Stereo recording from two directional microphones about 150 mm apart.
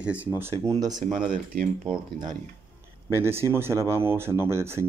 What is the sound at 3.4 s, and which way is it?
Speech, 15° right (ahead or behind).